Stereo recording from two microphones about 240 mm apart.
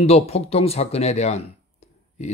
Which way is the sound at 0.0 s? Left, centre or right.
Left.